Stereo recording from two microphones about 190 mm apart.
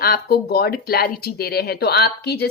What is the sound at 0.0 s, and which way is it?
Speech, 55° left (ahead or behind).